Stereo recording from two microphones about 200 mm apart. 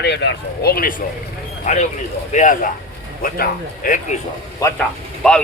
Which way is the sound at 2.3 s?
40° left (ahead or behind).